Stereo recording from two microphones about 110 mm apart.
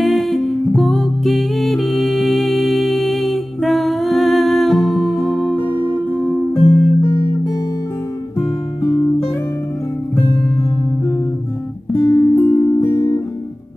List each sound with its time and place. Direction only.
0.0 s music: centre (ahead or behind)
6.5 s music: 20° left (ahead or behind)
8.4 s music: 25° left (ahead or behind)
11.9 s music: 25° left (ahead or behind)